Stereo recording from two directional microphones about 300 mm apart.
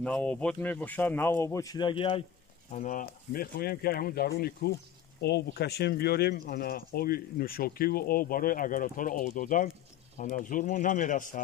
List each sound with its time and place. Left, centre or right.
0.0 s speech: centre; by 11.4 s left